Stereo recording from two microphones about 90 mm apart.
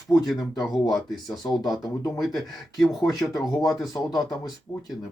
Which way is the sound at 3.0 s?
45° left (ahead or behind).